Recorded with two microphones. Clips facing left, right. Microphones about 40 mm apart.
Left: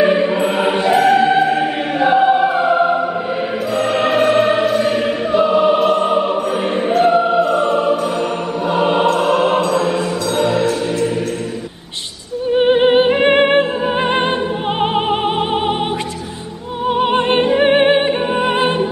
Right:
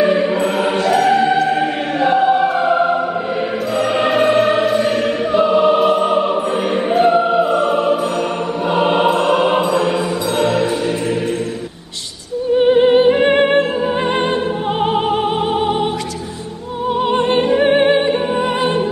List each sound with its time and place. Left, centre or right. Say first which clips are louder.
0.0 s music: left 1 dB; centre
12.5 s music: right 1 dB; left
17.1 s music: right 2 dB; left